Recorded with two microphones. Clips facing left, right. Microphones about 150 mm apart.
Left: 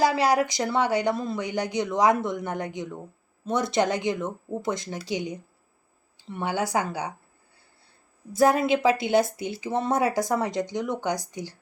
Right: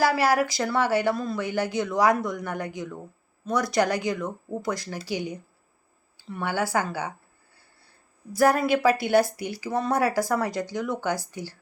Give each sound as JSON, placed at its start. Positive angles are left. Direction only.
{"t": 0.0, "sound": "a woman's voice", "side_deg": 20}
{"t": 8.3, "sound": "a woman's voice", "side_deg": 20}